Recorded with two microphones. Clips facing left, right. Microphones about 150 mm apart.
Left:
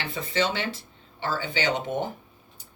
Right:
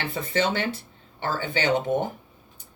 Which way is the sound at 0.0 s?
55° right (ahead or behind).